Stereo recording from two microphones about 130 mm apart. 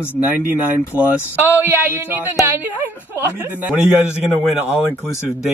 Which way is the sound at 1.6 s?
15° right (ahead or behind).